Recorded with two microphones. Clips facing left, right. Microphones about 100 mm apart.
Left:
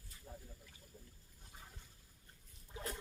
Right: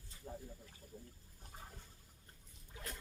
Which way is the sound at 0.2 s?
15° right (ahead or behind).